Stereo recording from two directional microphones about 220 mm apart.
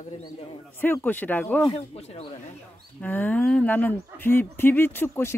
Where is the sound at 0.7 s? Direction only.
10° left (ahead or behind).